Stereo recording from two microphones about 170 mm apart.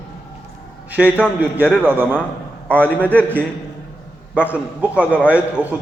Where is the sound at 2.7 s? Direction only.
10° left (ahead or behind).